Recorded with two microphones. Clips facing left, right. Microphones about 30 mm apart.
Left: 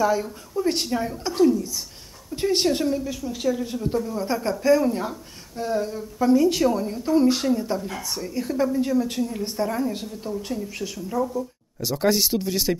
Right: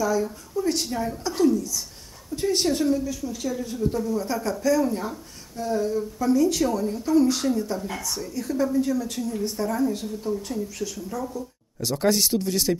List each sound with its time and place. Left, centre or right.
0.0 s a woman's voice: left
11.8 s speech: centre